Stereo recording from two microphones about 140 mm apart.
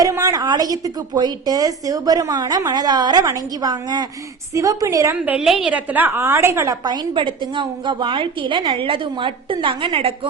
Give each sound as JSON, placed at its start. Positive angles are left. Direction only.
{"t": 0.0, "sound": "a woman's voice", "side_deg": -25}
{"t": 5.1, "sound": "a woman's voice", "side_deg": -10}